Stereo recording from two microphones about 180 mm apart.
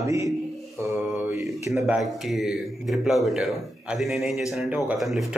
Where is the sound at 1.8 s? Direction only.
5° right (ahead or behind).